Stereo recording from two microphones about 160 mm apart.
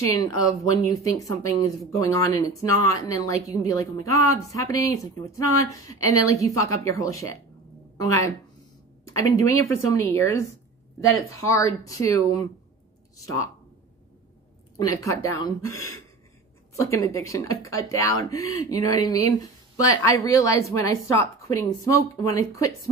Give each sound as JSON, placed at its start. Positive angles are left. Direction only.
{"t": 0.1, "sound": "speech", "side_deg": 20}
{"t": 9.0, "sound": "speech", "side_deg": 20}
{"t": 14.8, "sound": "speech", "side_deg": 20}